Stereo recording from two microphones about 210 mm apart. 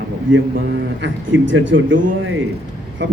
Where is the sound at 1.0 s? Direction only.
65° right (ahead or behind).